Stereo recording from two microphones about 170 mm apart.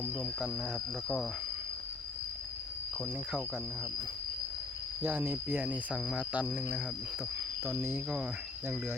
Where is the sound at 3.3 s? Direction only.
5° left (ahead or behind).